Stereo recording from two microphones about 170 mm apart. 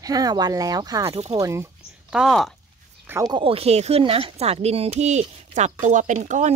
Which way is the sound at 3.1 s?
20° right (ahead or behind).